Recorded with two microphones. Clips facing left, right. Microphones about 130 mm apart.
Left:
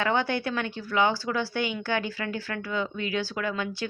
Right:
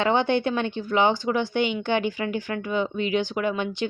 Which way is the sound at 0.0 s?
20° right (ahead or behind).